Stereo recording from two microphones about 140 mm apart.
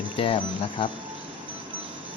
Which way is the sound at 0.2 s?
35° left (ahead or behind).